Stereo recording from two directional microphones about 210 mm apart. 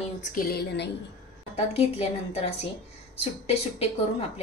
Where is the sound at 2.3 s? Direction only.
30° left (ahead or behind).